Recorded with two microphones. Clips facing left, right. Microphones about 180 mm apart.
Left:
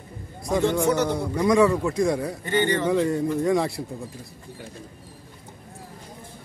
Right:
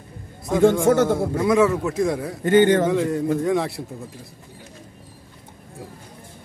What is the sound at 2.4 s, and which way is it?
Speech, 45° right (ahead or behind).